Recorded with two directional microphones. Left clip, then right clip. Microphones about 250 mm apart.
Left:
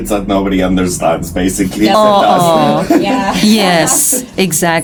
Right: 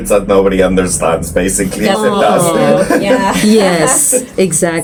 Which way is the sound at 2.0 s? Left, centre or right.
Left.